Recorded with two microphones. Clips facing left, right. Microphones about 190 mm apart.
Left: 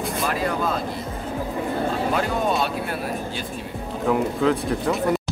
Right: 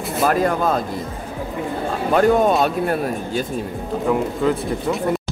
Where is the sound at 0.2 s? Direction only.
50° right (ahead or behind).